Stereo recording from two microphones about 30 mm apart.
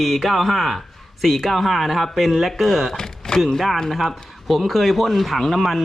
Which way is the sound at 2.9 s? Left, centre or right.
Centre.